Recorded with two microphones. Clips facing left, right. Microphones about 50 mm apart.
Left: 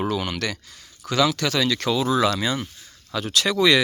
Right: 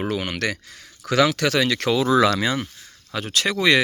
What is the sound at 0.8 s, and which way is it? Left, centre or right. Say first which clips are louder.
Speech: right 2 dB; right.